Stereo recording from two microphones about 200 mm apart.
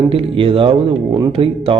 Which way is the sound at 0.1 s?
25° right (ahead or behind).